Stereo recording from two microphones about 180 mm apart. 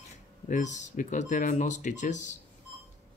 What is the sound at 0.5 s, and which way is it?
Speech, 40° left (ahead or behind).